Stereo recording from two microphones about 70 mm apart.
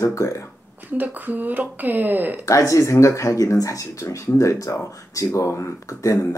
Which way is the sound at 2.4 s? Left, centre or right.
Left.